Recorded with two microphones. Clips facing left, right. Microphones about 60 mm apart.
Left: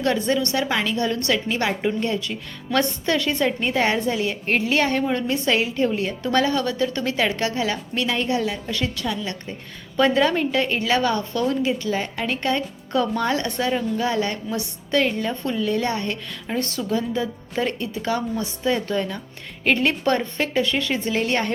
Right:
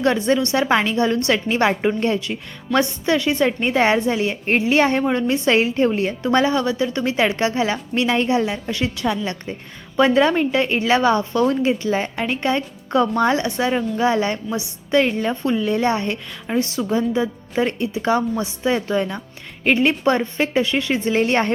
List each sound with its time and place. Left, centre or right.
0.0 s a woman's voice: right
2.7 s a woman's voice: centre
3.6 s a woman's voice: right
6.2 s a woman's voice: centre
10.0 s a woman's voice: centre
16.6 s a woman's voice: centre; by 21.5 s right